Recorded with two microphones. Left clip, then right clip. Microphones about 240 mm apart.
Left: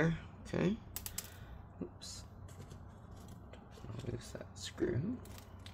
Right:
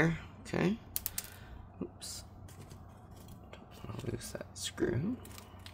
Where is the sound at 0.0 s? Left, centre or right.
Centre.